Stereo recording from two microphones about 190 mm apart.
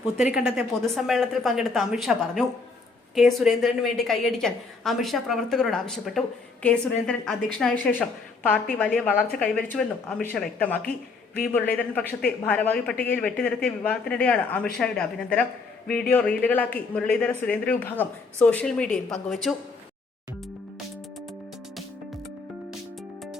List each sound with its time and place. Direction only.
0.0 s a woman's voice: 5° right (ahead or behind)